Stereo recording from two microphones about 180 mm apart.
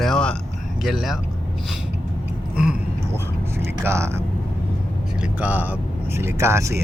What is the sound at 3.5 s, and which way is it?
Speech, 15° right (ahead or behind).